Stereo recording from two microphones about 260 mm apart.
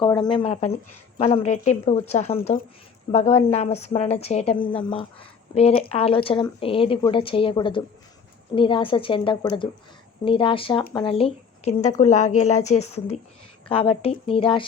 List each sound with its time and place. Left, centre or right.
0.0 s a woman's voice: centre